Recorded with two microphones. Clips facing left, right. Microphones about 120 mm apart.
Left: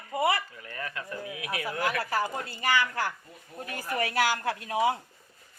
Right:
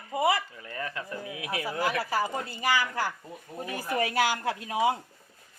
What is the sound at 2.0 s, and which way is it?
Speech, 10° right (ahead or behind).